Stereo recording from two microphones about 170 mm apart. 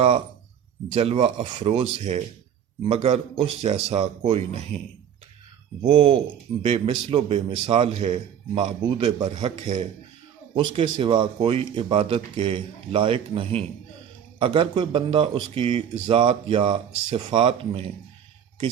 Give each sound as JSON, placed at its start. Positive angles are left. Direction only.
{"t": 0.9, "sound": "a man's voice", "side_deg": -35}
{"t": 5.8, "sound": "a man's voice", "side_deg": -35}
{"t": 9.6, "sound": "speech", "side_deg": -50}
{"t": 10.5, "sound": "speech", "side_deg": -30}